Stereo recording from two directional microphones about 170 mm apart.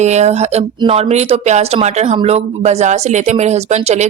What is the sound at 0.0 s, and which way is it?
Speech, 40° right (ahead or behind).